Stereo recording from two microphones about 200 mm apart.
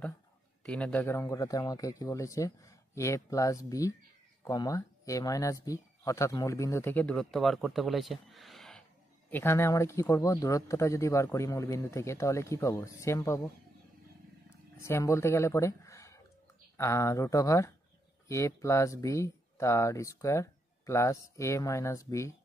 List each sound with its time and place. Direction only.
0.7 s speech: 5° left (ahead or behind)
9.3 s speech: 10° left (ahead or behind)
14.8 s speech: 15° left (ahead or behind)